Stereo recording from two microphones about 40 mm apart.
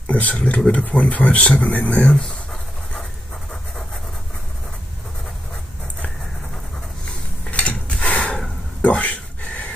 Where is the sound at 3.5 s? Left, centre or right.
Centre.